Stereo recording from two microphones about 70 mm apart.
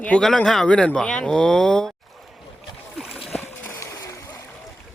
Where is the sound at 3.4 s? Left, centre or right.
Left.